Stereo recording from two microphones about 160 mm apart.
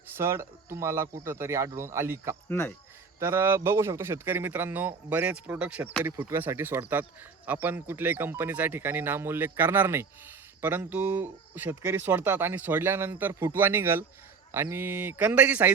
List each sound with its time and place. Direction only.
0.2 s speech: 15° right (ahead or behind)
2.5 s cricket: 10° left (ahead or behind)
3.2 s speech: 15° right (ahead or behind)